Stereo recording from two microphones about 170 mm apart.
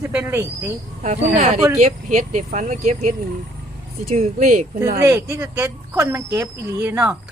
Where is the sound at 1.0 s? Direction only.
45° right (ahead or behind).